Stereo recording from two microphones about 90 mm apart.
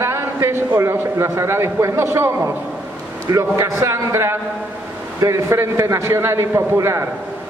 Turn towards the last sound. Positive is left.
turn(degrees=-30)  # may be behind; listen again after turning